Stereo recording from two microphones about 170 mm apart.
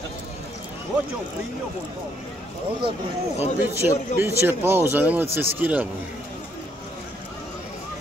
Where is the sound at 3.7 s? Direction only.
15° right (ahead or behind).